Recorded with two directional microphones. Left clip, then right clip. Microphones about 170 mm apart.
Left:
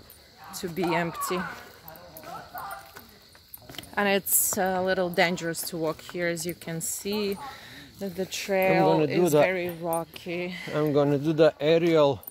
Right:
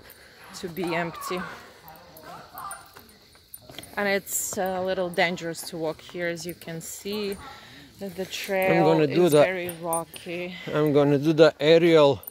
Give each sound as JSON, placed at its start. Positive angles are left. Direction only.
{"t": 0.5, "sound": "speech", "side_deg": 20}
{"t": 3.7, "sound": "speech", "side_deg": 30}
{"t": 9.2, "sound": "speech", "side_deg": -35}
{"t": 9.8, "sound": "speech", "side_deg": 15}
{"t": 10.7, "sound": "speech", "side_deg": -40}